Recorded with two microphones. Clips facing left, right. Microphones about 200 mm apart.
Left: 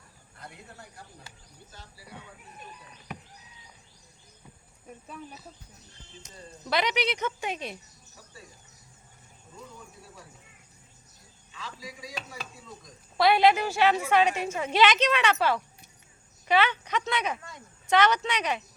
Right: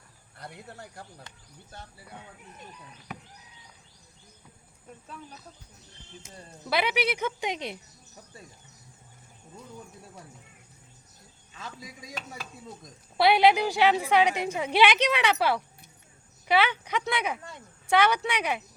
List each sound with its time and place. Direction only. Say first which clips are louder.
1.7 s speech: right 4 dB; 55° right (ahead or behind)
5.0 s speech: left 2 dB; 5° left (ahead or behind)
6.7 s a woman's voice: right 1 dB; 10° right (ahead or behind)
11.5 s speech: left 1 dB; 50° right (ahead or behind)
13.1 s a woman's voice: right 1 dB; 15° right (ahead or behind)